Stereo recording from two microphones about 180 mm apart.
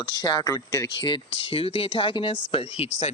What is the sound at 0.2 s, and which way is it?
Speech, 25° left (ahead or behind).